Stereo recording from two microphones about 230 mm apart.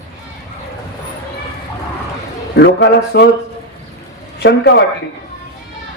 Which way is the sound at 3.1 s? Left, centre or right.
Left.